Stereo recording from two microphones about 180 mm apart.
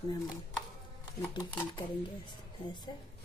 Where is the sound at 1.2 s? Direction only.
15° left (ahead or behind).